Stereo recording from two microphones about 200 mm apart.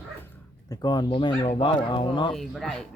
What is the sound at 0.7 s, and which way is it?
Speech, 20° left (ahead or behind).